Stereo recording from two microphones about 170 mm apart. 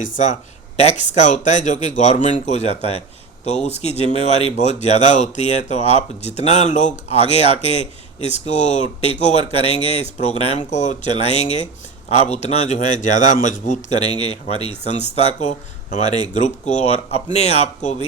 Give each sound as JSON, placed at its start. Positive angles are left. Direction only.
{"t": 0.0, "sound": "speech", "side_deg": 45}